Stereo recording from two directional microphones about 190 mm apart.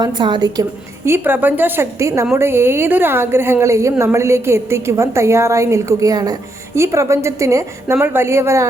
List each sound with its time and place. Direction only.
0.0 s a woman's voice: 20° right (ahead or behind)